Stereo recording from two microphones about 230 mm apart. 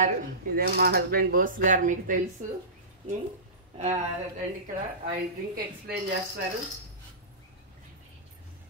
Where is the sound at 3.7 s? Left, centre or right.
Right.